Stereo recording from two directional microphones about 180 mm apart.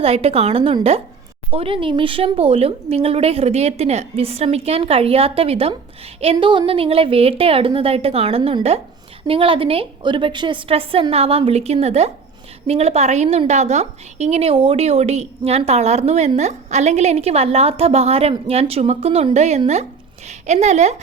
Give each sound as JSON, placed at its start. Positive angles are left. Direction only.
{"t": 0.0, "sound": "a woman's voice", "side_deg": -35}